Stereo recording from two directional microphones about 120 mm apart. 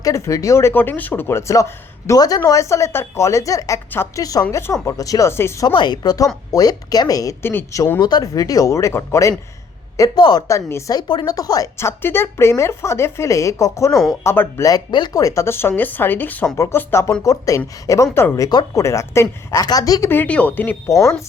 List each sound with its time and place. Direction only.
0.0 s speech: 25° left (ahead or behind)
5.6 s a woman's voice: 40° left (ahead or behind)
10.0 s a woman's voice: 35° left (ahead or behind)
10.7 s speech: 25° left (ahead or behind)
11.1 s speech: 35° left (ahead or behind)
20.1 s speech: 15° left (ahead or behind)
20.9 s speech: 25° left (ahead or behind)